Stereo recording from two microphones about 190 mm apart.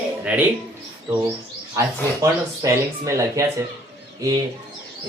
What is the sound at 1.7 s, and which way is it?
Speech, 15° right (ahead or behind).